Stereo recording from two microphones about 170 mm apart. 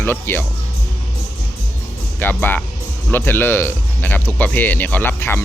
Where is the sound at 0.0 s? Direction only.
10° left (ahead or behind).